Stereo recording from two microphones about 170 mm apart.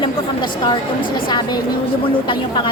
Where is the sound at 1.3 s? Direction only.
25° left (ahead or behind).